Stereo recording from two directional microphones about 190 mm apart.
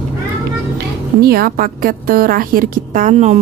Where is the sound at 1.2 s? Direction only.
50° right (ahead or behind).